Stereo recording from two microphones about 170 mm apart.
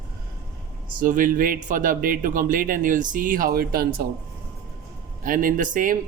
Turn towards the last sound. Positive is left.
turn(degrees=-50)  # may be behind; listen again after turning